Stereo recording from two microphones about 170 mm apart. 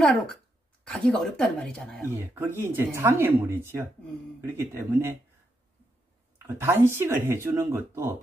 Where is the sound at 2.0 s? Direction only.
15° right (ahead or behind).